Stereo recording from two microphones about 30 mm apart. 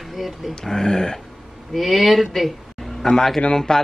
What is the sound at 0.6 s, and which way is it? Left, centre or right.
Speech, left.